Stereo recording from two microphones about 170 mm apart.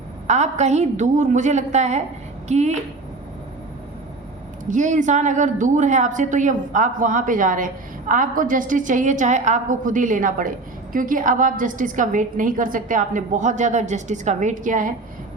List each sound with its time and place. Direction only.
0.3 s a woman's voice: 40° right (ahead or behind)
4.7 s a woman's voice: 45° right (ahead or behind)